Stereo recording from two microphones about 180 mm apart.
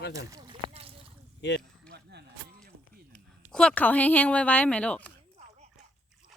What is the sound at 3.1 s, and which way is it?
A woman's voice, 5° left (ahead or behind).